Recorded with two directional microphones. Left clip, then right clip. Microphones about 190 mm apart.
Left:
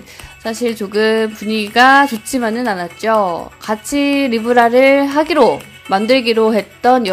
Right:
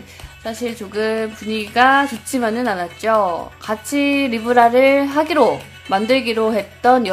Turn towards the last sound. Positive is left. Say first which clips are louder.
# left 2 dB
turn(degrees=15)  # may be behind; listen again after turning